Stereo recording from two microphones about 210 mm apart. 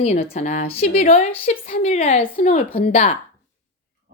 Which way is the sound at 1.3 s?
30° left (ahead or behind).